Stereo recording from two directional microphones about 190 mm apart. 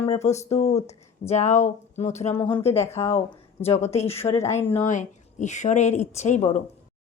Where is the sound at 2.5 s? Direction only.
25° left (ahead or behind).